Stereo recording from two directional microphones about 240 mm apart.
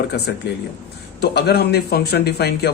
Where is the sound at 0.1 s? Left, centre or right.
Left.